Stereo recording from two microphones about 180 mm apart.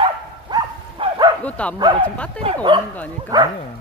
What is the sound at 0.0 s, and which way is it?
Dog, 25° right (ahead or behind).